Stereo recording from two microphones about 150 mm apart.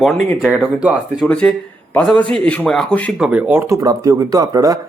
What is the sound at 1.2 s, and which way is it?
A man's voice, 5° left (ahead or behind).